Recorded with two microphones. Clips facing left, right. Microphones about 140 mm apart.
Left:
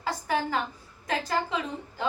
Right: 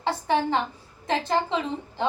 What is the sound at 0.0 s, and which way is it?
A woman's voice, 25° right (ahead or behind).